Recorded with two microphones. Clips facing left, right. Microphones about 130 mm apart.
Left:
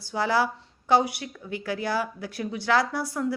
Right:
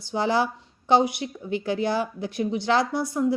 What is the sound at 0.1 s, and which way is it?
A woman's voice, 20° right (ahead or behind).